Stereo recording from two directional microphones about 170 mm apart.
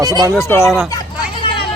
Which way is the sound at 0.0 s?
20° right (ahead or behind).